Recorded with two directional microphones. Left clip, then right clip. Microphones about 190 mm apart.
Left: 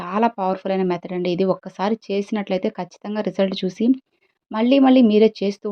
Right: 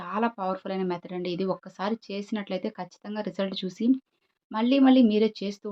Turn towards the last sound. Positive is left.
turn(degrees=30)  # may be behind; listen again after turning